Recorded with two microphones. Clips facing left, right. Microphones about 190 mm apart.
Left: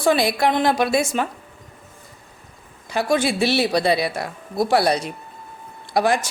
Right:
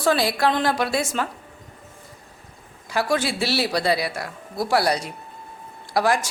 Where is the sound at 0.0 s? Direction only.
15° left (ahead or behind).